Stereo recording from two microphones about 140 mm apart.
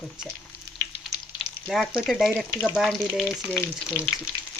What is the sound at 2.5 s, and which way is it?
Speech, 15° left (ahead or behind).